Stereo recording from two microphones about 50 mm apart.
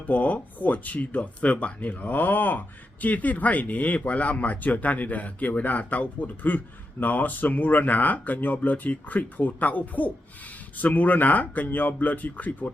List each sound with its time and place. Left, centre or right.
0.1 s speech: left